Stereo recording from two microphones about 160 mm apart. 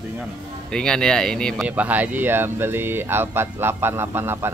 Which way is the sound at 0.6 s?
5° left (ahead or behind).